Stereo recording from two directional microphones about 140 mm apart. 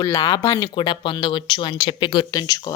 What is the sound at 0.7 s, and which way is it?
Speech, 35° left (ahead or behind).